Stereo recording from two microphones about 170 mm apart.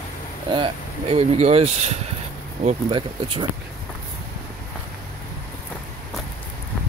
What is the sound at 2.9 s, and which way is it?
Speech, 30° right (ahead or behind).